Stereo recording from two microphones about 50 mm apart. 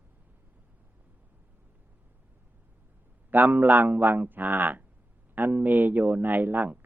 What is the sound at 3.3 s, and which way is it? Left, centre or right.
Speech, right.